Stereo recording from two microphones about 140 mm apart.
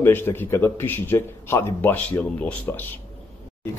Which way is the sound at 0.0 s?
15° left (ahead or behind).